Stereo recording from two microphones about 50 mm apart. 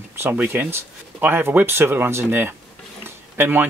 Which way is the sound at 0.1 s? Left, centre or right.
Right.